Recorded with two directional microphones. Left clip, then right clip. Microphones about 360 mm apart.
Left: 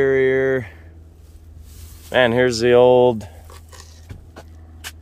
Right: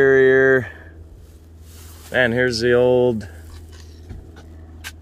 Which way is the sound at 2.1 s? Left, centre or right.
Centre.